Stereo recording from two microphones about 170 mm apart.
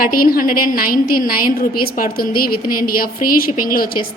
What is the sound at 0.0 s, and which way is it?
A woman's voice, 60° left (ahead or behind).